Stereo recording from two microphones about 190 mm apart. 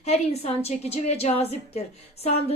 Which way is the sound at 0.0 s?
35° left (ahead or behind).